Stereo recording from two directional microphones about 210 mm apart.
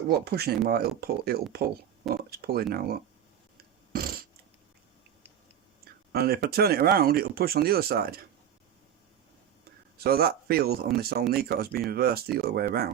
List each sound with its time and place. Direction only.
0.3 s speech: 50° right (ahead or behind)
3.9 s cat: 45° right (ahead or behind)
6.1 s speech: 45° right (ahead or behind)
10.0 s speech: 45° right (ahead or behind)